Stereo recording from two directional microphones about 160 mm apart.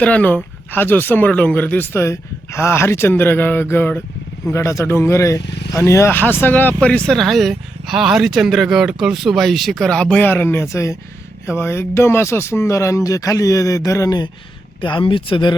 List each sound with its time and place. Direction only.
0.0 s speech: 10° left (ahead or behind); by 15.5 s 30° left (ahead or behind)